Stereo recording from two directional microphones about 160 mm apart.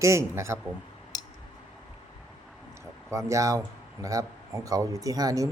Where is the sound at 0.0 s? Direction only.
20° right (ahead or behind).